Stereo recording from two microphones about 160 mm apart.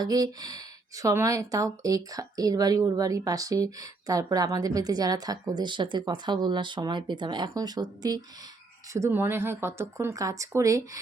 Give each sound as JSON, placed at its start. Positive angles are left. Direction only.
{"t": 0.0, "sound": "speech", "side_deg": -25}